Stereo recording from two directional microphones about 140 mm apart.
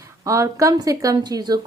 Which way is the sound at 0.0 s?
20° right (ahead or behind).